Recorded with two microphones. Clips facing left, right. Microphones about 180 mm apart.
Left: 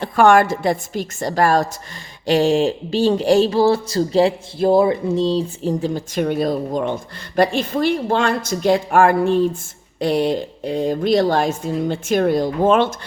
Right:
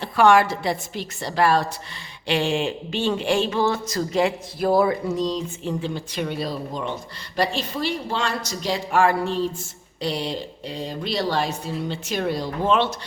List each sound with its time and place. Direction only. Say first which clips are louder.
0.0 s speech: left 3 dB; 50° left (ahead or behind)